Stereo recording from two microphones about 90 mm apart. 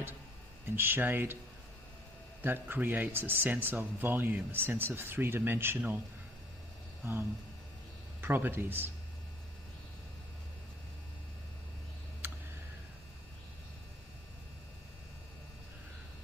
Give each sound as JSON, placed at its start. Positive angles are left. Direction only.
{"t": 0.7, "sound": "a man's voice", "side_deg": -25}
{"t": 2.4, "sound": "a man's voice", "side_deg": -20}
{"t": 8.2, "sound": "a man's voice", "side_deg": -20}
{"t": 12.2, "sound": "tick", "side_deg": -25}